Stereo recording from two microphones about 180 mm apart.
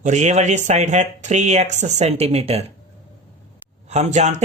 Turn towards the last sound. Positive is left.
turn(degrees=-40)  # may be behind; listen again after turning